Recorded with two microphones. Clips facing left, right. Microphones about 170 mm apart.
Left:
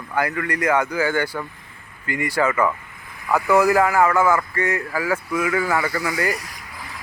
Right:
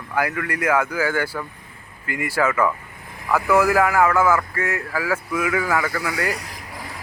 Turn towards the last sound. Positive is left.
turn(degrees=-65)  # may be behind; listen again after turning